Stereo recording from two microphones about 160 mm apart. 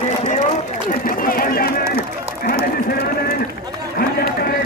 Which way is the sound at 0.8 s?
65° left (ahead or behind).